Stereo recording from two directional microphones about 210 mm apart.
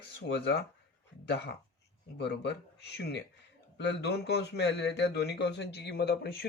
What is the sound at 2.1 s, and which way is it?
A man's voice, 55° left (ahead or behind).